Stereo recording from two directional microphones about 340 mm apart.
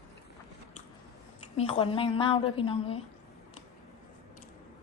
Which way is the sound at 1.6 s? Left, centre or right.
Centre.